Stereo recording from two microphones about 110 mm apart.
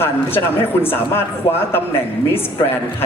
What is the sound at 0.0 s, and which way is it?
Speech, 20° left (ahead or behind).